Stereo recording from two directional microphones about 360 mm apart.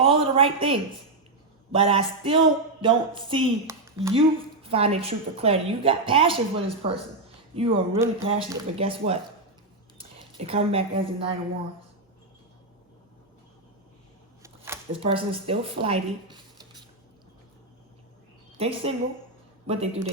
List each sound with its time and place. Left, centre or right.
0.0 s a sound: centre
10.0 s speech: centre
14.4 s speech: centre
18.5 s a woman's voice: centre